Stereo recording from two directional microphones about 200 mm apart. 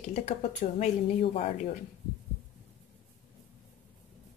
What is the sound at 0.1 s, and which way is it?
Speech, 35° left (ahead or behind).